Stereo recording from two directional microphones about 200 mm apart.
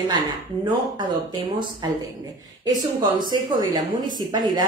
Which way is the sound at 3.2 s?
20° right (ahead or behind).